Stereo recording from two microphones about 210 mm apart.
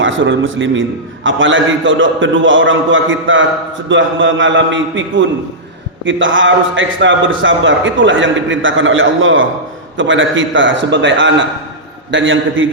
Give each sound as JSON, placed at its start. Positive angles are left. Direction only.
{"t": 0.0, "sound": "a man's voice", "side_deg": -65}